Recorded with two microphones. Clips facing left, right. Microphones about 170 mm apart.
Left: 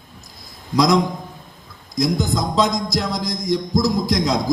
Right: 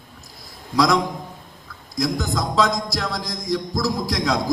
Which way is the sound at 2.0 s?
20° left (ahead or behind).